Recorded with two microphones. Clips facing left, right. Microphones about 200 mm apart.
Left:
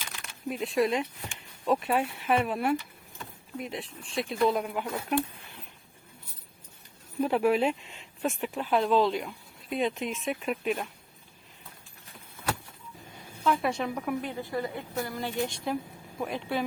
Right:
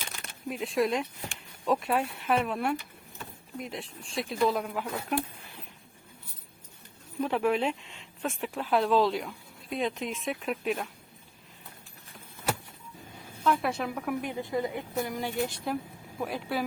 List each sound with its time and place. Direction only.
0.4 s speech: centre (ahead or behind)
7.2 s speech: 5° left (ahead or behind)
13.4 s speech: centre (ahead or behind)
14.2 s speech: 15° right (ahead or behind)
15.4 s speech: centre (ahead or behind)